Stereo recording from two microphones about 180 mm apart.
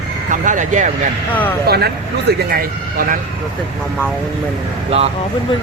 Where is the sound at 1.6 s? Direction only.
60° right (ahead or behind).